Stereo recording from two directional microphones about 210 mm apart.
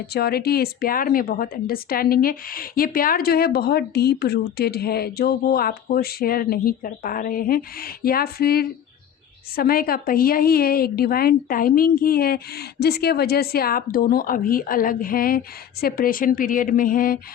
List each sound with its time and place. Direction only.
0.1 s speech: 45° left (ahead or behind)